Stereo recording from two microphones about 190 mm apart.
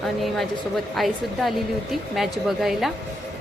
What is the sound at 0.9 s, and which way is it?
A woman's voice, centre (ahead or behind).